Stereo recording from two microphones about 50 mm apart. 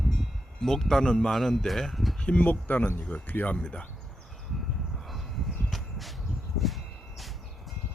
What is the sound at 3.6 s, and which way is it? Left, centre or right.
Speech, left.